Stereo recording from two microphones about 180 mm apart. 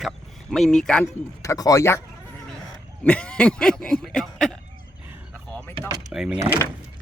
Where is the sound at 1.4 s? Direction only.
20° left (ahead or behind).